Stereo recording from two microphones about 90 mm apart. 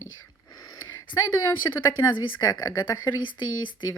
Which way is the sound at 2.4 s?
45° left (ahead or behind).